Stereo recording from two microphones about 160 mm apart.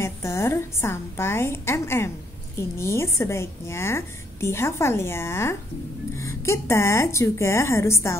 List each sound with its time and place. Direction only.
0.0 s a woman's voice: 15° left (ahead or behind)